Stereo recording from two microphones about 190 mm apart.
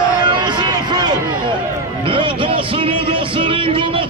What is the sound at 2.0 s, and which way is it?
Music, 25° right (ahead or behind).